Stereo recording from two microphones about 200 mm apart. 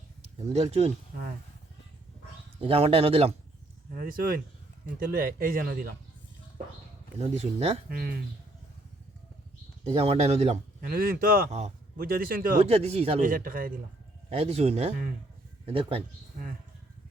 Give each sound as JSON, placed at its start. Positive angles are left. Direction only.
{"t": 0.5, "sound": "speech", "side_deg": -30}
{"t": 2.6, "sound": "speech", "side_deg": -30}
{"t": 3.9, "sound": "speech", "side_deg": -45}
{"t": 7.2, "sound": "speech", "side_deg": -35}
{"t": 7.9, "sound": "speech", "side_deg": -50}
{"t": 9.8, "sound": "speech", "side_deg": -30}
{"t": 10.8, "sound": "speech", "side_deg": -45}
{"t": 12.6, "sound": "speech", "side_deg": -30}
{"t": 13.2, "sound": "speech", "side_deg": -45}
{"t": 14.3, "sound": "speech", "side_deg": -30}